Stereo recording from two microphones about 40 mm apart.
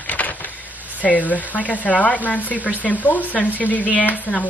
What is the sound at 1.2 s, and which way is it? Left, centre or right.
Speech, left.